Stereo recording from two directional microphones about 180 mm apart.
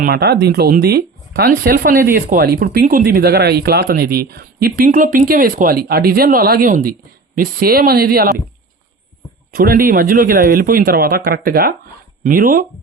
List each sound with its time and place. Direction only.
0.0 s speech: 60° right (ahead or behind)
9.6 s a man's voice: 55° right (ahead or behind)